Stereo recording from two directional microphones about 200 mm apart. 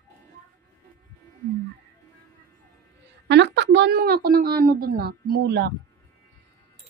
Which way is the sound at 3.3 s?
60° right (ahead or behind).